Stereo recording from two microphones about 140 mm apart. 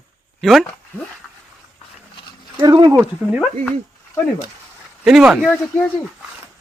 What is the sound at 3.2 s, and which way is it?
Speech, 5° right (ahead or behind).